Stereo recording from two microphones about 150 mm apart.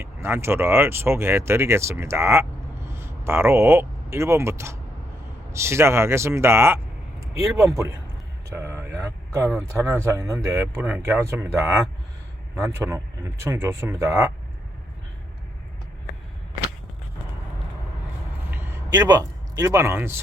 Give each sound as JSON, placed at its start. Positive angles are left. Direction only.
{"t": 0.0, "sound": "speech", "side_deg": -15}
{"t": 8.4, "sound": "vehicle", "side_deg": -15}
{"t": 9.6, "sound": "speech", "side_deg": -20}
{"t": 18.5, "sound": "a sound", "side_deg": -15}
{"t": 18.9, "sound": "speech", "side_deg": -25}